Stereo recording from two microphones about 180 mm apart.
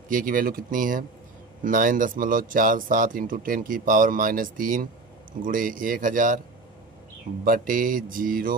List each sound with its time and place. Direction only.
0.1 s speech: 50° right (ahead or behind)
7.4 s speech: 50° right (ahead or behind)